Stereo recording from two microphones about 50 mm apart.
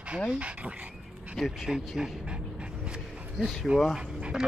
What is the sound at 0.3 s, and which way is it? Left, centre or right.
Speech, right.